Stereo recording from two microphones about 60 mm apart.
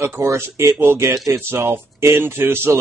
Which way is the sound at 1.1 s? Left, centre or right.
Right.